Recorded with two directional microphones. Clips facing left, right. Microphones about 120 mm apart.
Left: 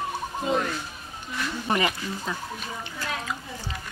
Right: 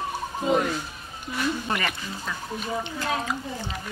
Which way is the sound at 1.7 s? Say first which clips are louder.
Left 3 dB; 20° left (ahead or behind).